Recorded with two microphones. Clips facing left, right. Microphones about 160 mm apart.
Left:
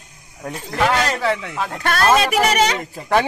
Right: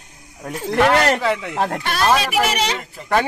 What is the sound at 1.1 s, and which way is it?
Speech, 15° right (ahead or behind).